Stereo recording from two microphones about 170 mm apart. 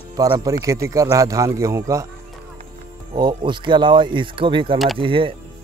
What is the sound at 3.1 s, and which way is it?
Speech, 25° right (ahead or behind).